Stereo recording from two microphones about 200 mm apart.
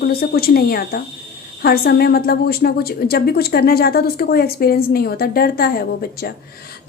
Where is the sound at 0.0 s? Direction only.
50° left (ahead or behind).